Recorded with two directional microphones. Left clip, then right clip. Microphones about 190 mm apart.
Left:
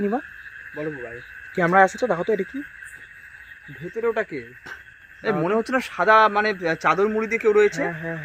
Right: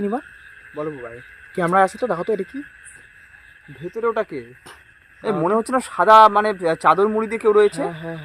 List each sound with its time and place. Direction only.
0.0 s speech: centre (ahead or behind)
0.7 s a man's voice: 25° right (ahead or behind)
1.5 s speech: 5° right (ahead or behind)
3.8 s a man's voice: 25° right (ahead or behind)